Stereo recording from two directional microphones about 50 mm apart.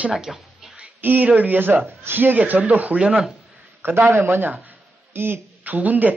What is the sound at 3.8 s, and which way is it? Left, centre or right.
Speech, right.